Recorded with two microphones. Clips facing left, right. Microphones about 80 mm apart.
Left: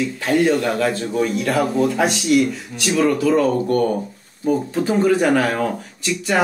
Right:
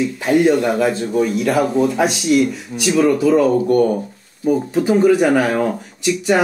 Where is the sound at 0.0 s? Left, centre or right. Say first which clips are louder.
Right 3 dB; centre.